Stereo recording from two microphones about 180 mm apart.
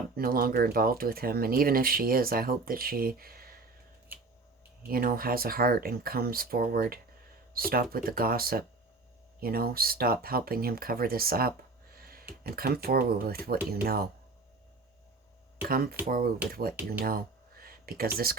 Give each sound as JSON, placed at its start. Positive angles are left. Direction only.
{"t": 0.2, "sound": "speech", "side_deg": -55}
{"t": 4.9, "sound": "speech", "side_deg": -55}
{"t": 15.7, "sound": "speech", "side_deg": -55}
{"t": 17.0, "sound": "a sound", "side_deg": -55}